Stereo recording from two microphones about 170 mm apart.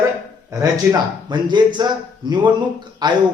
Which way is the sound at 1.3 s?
25° right (ahead or behind).